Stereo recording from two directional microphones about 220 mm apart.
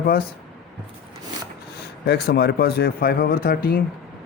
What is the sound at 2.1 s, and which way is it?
Speech, 45° left (ahead or behind).